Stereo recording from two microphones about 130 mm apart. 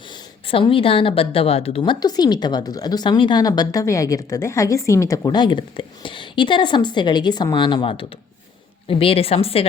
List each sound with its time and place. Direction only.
0.4 s a woman's voice: 45° left (ahead or behind)